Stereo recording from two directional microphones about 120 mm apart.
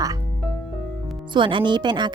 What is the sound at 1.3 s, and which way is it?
Speech, 40° right (ahead or behind).